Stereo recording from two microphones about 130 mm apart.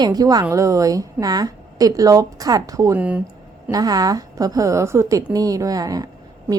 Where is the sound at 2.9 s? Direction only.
10° right (ahead or behind).